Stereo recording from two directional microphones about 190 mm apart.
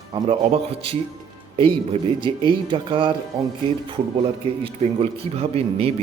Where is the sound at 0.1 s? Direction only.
30° right (ahead or behind).